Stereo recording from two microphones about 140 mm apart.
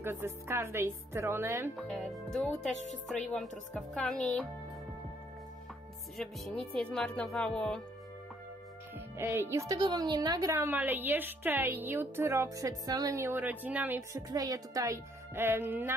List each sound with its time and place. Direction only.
0.0 s speech: 15° right (ahead or behind)
1.8 s speech: centre (ahead or behind)
3.9 s speech: 5° left (ahead or behind)
6.1 s speech: 5° left (ahead or behind)
8.9 s speech: 15° right (ahead or behind)
14.1 s speech: 25° right (ahead or behind)